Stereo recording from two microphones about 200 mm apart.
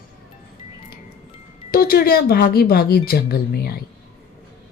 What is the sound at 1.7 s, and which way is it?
Speech, 50° left (ahead or behind).